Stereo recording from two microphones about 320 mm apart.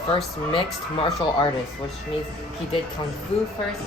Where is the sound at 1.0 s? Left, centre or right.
Centre.